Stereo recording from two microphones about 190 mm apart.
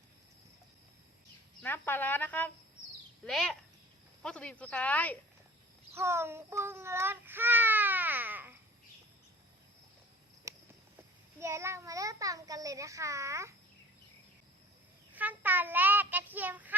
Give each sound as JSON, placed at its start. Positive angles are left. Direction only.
{"t": 1.6, "sound": "speech", "side_deg": 10}
{"t": 5.9, "sound": "child singing", "side_deg": -15}
{"t": 10.5, "sound": "cricket", "side_deg": -15}
{"t": 11.3, "sound": "a child's voice", "side_deg": -15}
{"t": 15.1, "sound": "speech", "side_deg": -10}